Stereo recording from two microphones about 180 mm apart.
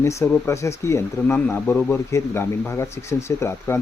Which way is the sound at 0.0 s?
15° left (ahead or behind).